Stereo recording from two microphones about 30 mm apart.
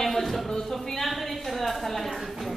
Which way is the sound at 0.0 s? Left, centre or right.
Centre.